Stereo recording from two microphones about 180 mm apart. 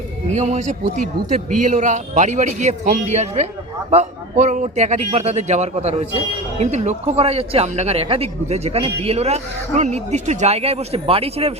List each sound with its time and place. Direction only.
0.3 s a man's voice: 40° right (ahead or behind)